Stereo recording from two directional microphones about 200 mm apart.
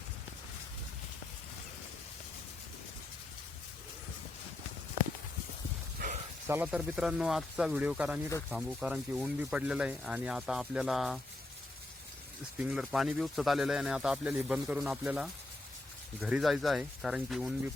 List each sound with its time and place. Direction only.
6.0 s a sound: 50° right (ahead or behind)
6.5 s speech: 5° right (ahead or behind)
12.5 s speech: 5° right (ahead or behind)